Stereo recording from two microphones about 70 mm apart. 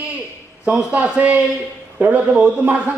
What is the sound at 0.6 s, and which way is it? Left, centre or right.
A man's voice, centre.